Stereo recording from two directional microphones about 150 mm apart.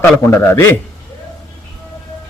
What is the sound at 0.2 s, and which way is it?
Speech, 15° left (ahead or behind).